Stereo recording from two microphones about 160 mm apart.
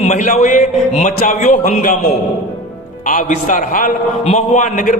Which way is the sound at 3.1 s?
50° left (ahead or behind).